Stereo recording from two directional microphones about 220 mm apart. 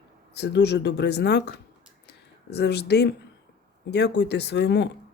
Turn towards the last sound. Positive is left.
turn(degrees=50)  # may be behind; listen again after turning